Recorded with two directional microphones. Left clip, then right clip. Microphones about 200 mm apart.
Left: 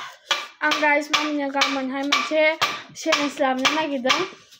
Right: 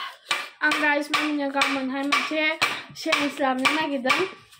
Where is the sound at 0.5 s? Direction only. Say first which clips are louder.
Left 2 dB; 30° left (ahead or behind).